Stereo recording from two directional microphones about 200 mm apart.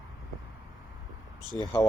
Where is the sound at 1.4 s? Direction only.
20° right (ahead or behind).